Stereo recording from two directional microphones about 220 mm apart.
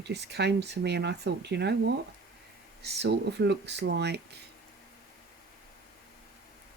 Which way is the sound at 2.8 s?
50° right (ahead or behind).